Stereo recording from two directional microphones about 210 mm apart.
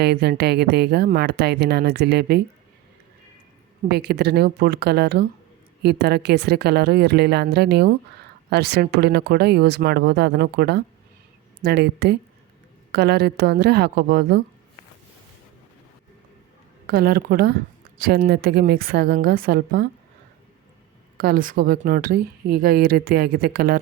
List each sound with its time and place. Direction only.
0.0 s a woman's voice: 50° right (ahead or behind)
3.8 s a woman's voice: 50° right (ahead or behind)
16.8 s a woman's voice: 45° right (ahead or behind)
21.2 s a woman's voice: 45° right (ahead or behind)